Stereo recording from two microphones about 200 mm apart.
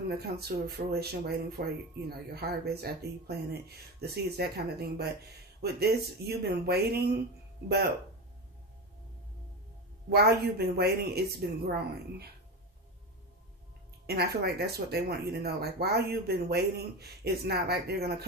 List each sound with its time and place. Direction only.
0.4 s speech: 50° right (ahead or behind)
10.0 s speech: 55° right (ahead or behind)
14.0 s speech: 50° right (ahead or behind)